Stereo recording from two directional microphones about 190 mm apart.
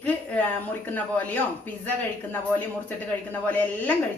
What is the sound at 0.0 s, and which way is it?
A woman's voice, 10° left (ahead or behind).